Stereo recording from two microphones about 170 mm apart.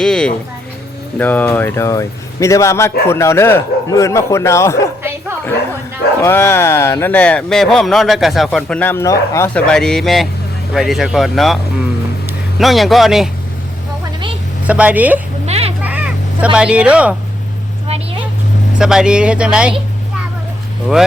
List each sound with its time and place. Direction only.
0.0 s a man's voice: 5° left (ahead or behind)
6.2 s a man's voice: 15° left (ahead or behind)
9.6 s a man's voice: 5° left (ahead or behind)
14.0 s vehicle: 30° right (ahead or behind)
14.7 s a woman's voice: 10° right (ahead or behind)
15.4 s a sound: 35° right (ahead or behind)
15.8 s a sound: 10° right (ahead or behind)
18.8 s a man's voice: 5° right (ahead or behind)